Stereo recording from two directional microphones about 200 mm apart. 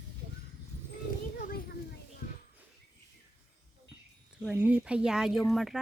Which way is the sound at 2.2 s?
45° left (ahead or behind).